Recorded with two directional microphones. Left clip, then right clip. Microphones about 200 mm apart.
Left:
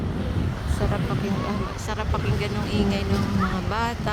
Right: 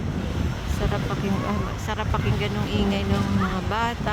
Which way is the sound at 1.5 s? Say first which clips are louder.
Right 1 dB; centre (ahead or behind).